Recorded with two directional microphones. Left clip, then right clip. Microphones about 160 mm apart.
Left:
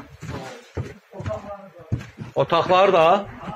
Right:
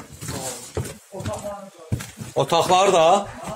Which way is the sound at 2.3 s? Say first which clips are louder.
Even; 20° right (ahead or behind).